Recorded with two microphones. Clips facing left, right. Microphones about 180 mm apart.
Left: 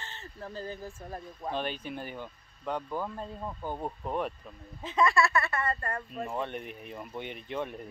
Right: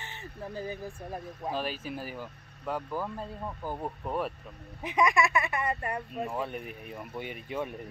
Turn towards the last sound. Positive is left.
turn(degrees=-5)  # may be behind; listen again after turning